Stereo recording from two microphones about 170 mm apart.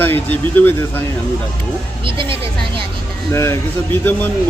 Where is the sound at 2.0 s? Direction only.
30° right (ahead or behind).